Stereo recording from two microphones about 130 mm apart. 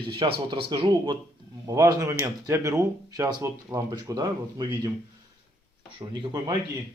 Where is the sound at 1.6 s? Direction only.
25° right (ahead or behind).